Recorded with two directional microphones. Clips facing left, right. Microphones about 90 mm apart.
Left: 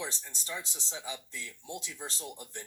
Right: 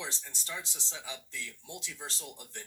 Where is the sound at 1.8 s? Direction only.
30° left (ahead or behind).